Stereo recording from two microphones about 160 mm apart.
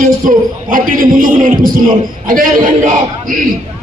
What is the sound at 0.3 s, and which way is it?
A man's voice, 60° right (ahead or behind).